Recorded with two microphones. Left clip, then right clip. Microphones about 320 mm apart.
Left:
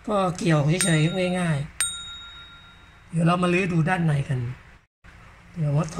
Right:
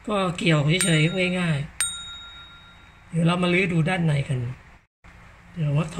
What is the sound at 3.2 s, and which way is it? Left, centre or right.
Speech, centre.